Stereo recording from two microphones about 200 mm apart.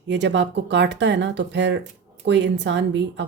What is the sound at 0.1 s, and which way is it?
A woman's voice, 60° right (ahead or behind).